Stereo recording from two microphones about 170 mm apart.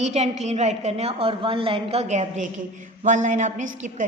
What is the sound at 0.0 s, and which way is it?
A woman's voice, 40° right (ahead or behind).